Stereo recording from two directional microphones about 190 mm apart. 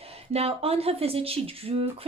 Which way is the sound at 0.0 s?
30° right (ahead or behind).